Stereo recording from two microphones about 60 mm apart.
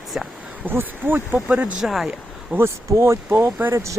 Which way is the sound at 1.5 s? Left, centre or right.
Right.